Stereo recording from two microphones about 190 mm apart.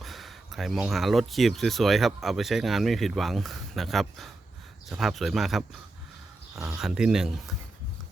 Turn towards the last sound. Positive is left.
turn(degrees=-5)  # may be behind; listen again after turning